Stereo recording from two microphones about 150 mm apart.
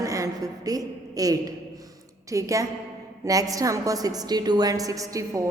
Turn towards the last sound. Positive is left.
turn(degrees=-20)  # may be behind; listen again after turning